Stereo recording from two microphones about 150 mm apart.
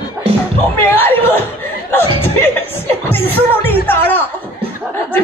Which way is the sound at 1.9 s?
15° left (ahead or behind).